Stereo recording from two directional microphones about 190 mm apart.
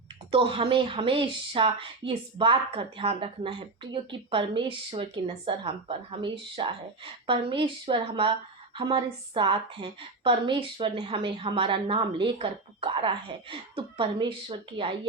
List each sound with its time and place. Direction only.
0.3 s a woman's voice: 30° right (ahead or behind)